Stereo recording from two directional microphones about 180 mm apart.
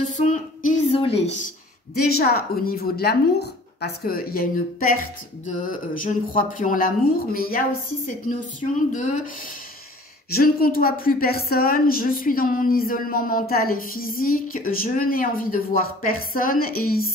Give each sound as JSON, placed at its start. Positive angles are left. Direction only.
{"t": 0.1, "sound": "a woman's voice", "side_deg": 45}
{"t": 2.0, "sound": "a woman's voice", "side_deg": 60}
{"t": 10.3, "sound": "a woman's voice", "side_deg": 55}